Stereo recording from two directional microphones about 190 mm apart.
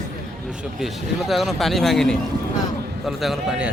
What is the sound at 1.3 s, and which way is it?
Speech, centre (ahead or behind).